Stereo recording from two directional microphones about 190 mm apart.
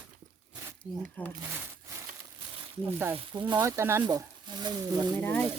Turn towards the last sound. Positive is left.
turn(degrees=10)  # may be behind; listen again after turning